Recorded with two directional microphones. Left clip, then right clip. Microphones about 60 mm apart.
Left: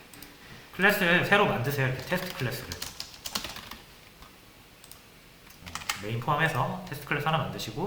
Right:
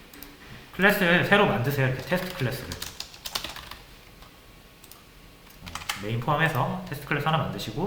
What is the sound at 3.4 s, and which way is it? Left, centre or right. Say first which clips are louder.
Typing: right 2 dB; centre.